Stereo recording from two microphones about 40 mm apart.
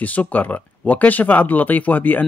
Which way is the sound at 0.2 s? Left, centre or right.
Left.